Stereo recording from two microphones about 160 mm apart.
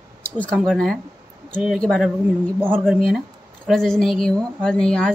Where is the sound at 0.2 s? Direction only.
10° left (ahead or behind).